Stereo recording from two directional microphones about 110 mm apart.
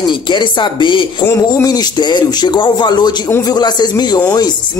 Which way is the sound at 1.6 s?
35° left (ahead or behind).